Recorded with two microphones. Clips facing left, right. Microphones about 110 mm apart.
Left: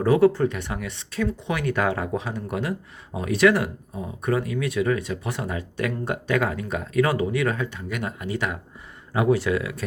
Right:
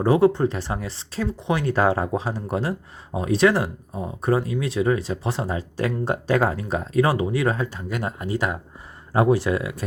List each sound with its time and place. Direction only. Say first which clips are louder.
0.0 s speech: even; 30° right (ahead or behind)